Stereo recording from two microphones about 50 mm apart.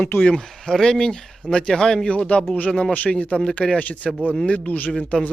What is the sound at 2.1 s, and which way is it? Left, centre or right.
Speech, left.